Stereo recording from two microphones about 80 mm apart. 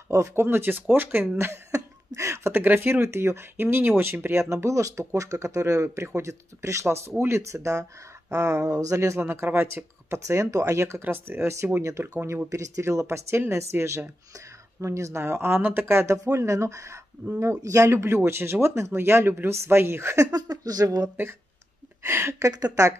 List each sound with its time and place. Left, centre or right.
0.1 s speech: right
1.5 s speech: right
20.2 s speech: right
22.0 s speech: right